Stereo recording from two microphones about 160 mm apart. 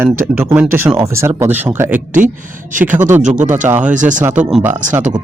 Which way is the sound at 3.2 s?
50° right (ahead or behind).